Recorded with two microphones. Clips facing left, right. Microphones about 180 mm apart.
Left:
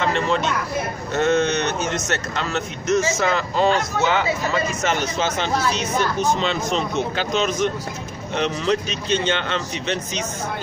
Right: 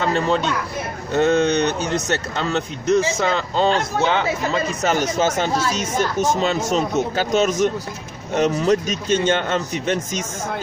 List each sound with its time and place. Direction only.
0.0 s speech: 35° right (ahead or behind)
4.8 s a man's voice: 45° right (ahead or behind)